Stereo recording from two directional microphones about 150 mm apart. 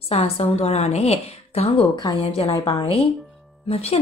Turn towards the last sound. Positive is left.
turn(degrees=40)  # may be behind; listen again after turning